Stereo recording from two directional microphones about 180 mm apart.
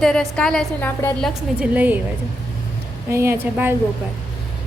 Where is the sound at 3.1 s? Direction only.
15° right (ahead or behind).